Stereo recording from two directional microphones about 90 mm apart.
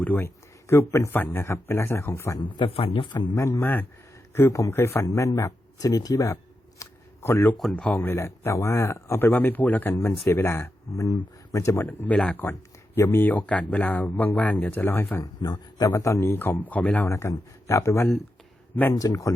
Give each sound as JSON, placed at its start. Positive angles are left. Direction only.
{"t": 0.0, "sound": "speech", "side_deg": 20}
{"t": 0.7, "sound": "speech", "side_deg": 35}
{"t": 1.1, "sound": "speech", "side_deg": 25}
{"t": 2.4, "sound": "a man's voice", "side_deg": 75}
{"t": 3.3, "sound": "speech", "side_deg": 35}
{"t": 7.5, "sound": "speech", "side_deg": 5}
{"t": 11.9, "sound": "speech", "side_deg": 15}
{"t": 12.4, "sound": "speech", "side_deg": 25}
{"t": 15.2, "sound": "speech", "side_deg": 45}
{"t": 17.1, "sound": "speech", "side_deg": 35}